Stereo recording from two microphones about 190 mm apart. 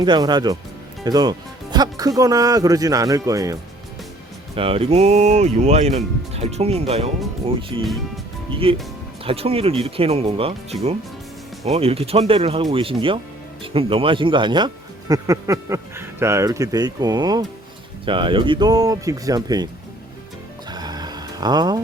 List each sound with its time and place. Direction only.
0.0 s speech: 20° right (ahead or behind)
4.5 s speech: 30° right (ahead or behind)
8.6 s speech: 30° right (ahead or behind)
20.7 s music: 20° right (ahead or behind)